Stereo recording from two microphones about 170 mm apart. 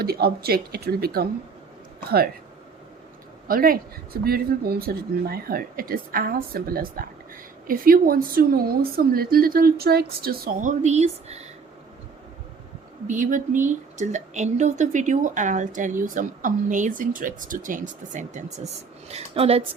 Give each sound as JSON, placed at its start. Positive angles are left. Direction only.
{"t": 0.0, "sound": "speech", "side_deg": -65}
{"t": 3.5, "sound": "speech", "side_deg": -55}
{"t": 13.1, "sound": "speech", "side_deg": -50}